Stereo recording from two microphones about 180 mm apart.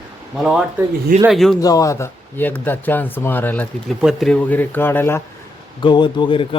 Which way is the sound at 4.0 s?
Centre (ahead or behind).